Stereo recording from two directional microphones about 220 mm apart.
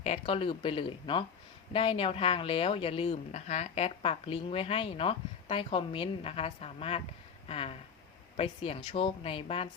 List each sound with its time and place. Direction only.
0.0 s speech: 25° left (ahead or behind)
7.4 s a sound: 25° left (ahead or behind)
8.4 s speech: 25° left (ahead or behind)